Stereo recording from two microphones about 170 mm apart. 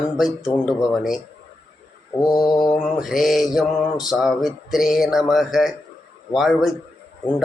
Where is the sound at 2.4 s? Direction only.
25° left (ahead or behind).